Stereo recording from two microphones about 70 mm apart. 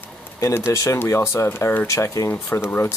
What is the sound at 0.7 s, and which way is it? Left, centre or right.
Speech, left.